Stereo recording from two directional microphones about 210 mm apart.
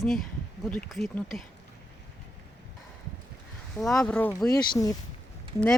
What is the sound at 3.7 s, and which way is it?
Speech, centre (ahead or behind).